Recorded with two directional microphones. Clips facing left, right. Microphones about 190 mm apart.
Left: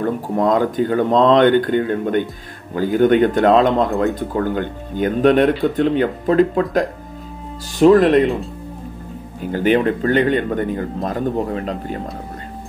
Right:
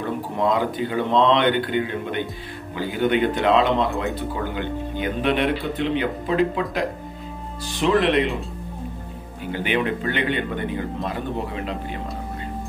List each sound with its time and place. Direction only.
0.0 s speech: 45° left (ahead or behind)
9.4 s speech: 40° left (ahead or behind)